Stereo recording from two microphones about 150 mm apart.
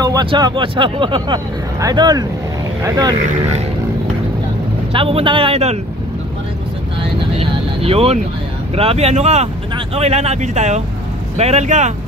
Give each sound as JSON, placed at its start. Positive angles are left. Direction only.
{"t": 0.0, "sound": "speech", "side_deg": -30}
{"t": 4.9, "sound": "speech", "side_deg": -40}
{"t": 7.0, "sound": "vehicle", "side_deg": -40}
{"t": 8.7, "sound": "speech", "side_deg": -40}